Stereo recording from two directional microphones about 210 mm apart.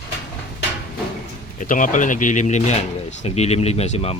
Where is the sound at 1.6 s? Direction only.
40° left (ahead or behind).